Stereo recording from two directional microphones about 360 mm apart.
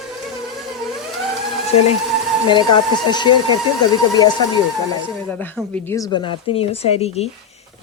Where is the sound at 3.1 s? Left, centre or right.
Centre.